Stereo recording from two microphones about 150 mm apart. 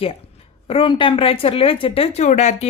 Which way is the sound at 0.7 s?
35° left (ahead or behind).